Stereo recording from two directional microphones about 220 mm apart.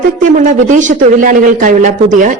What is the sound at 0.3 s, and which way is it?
A woman's voice, 35° right (ahead or behind).